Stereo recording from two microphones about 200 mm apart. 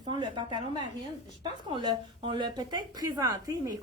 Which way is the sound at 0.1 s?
25° right (ahead or behind).